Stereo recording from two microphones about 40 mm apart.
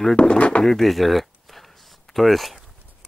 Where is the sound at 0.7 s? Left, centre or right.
Centre.